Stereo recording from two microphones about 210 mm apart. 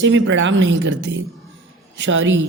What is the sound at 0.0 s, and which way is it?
A man's voice, 60° right (ahead or behind).